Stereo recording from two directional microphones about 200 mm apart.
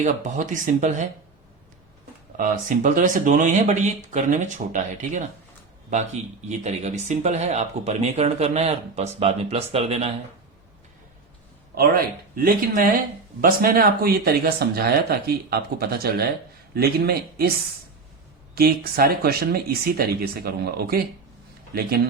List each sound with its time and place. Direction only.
0.0 s speech: 40° right (ahead or behind)
2.4 s speech: 40° right (ahead or behind)
6.5 s speech: 35° right (ahead or behind)
11.7 s speech: 50° right (ahead or behind)
18.5 s speech: 50° right (ahead or behind)